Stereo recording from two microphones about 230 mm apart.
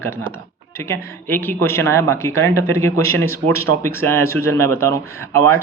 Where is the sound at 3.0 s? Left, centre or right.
Right.